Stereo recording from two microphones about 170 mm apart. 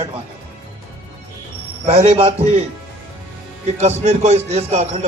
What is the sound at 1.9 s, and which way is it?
Speech, 35° right (ahead or behind).